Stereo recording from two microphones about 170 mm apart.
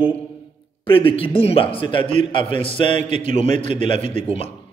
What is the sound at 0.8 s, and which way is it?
A man's voice, 30° left (ahead or behind).